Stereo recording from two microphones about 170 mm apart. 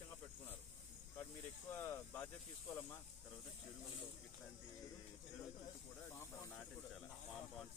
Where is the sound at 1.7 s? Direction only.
15° left (ahead or behind).